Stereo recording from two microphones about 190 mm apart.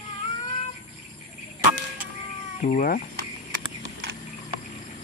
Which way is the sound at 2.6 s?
45° left (ahead or behind).